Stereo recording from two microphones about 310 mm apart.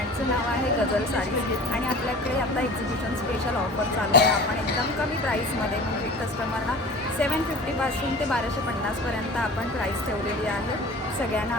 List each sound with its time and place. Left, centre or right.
4.1 s speech: left